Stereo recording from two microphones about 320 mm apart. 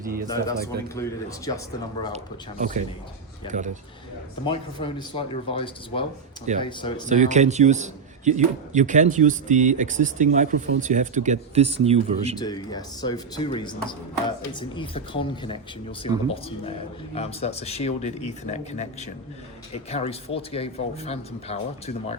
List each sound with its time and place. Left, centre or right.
0.0 s speech: right
0.3 s speech: centre
2.1 s a man's voice: right
4.4 s speech: centre
7.1 s a man's voice: right
12.4 s speech: centre